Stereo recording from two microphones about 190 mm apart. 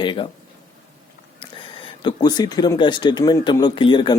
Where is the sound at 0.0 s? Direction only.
25° left (ahead or behind).